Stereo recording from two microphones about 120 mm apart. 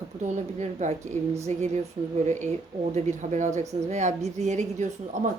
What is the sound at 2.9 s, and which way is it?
A woman's voice, 85° right.